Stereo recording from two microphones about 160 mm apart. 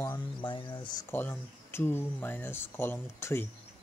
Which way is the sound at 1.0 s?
15° left (ahead or behind).